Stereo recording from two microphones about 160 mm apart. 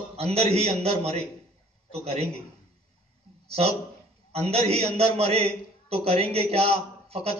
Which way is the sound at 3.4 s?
40° right (ahead or behind).